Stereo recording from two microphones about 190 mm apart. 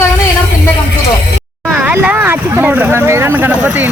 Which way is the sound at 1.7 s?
10° right (ahead or behind).